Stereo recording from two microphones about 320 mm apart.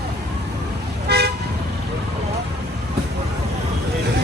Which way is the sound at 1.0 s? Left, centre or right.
Right.